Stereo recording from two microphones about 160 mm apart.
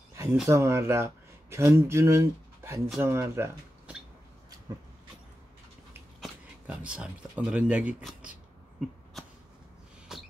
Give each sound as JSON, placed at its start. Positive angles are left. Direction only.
{"t": 0.1, "sound": "a sound", "side_deg": -15}
{"t": 0.5, "sound": "speech", "side_deg": -15}
{"t": 6.2, "sound": "speech", "side_deg": -5}
{"t": 10.1, "sound": "rodents", "side_deg": -5}